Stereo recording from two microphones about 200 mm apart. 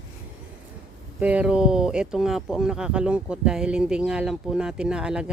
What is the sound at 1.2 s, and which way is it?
Speech, 5° right (ahead or behind).